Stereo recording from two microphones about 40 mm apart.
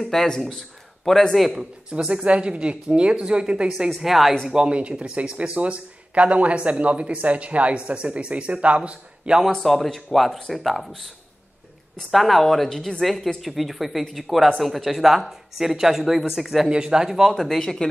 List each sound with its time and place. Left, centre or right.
0.0 s speech: centre
1.3 s speech: centre
2.0 s speech: right
3.9 s speech: centre
4.5 s speech: centre
4.7 s speech: right
9.6 s speech: centre
12.1 s speech: centre
13.0 s speech: centre
16.6 s speech: centre
17.1 s speech: centre
17.4 s speech: centre